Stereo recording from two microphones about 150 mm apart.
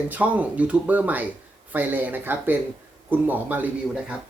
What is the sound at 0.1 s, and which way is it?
Speech, 10° right (ahead or behind).